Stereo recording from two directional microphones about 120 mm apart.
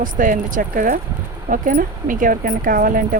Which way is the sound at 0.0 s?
90° right.